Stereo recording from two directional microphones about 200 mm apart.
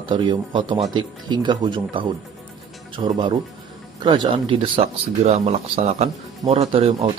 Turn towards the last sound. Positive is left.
turn(degrees=-30)  # may be behind; listen again after turning